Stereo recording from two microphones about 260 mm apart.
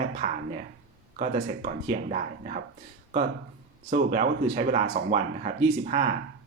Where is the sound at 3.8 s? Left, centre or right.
Right.